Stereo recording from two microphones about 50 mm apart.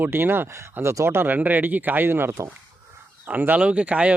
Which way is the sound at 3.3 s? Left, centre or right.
Right.